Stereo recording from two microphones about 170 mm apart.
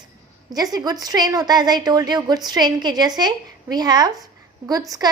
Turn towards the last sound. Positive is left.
turn(degrees=-20)  # may be behind; listen again after turning